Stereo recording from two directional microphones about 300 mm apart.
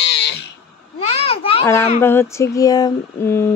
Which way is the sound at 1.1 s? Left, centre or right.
Centre.